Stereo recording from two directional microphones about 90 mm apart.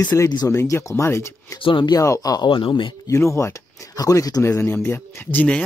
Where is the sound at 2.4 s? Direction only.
65° left (ahead or behind).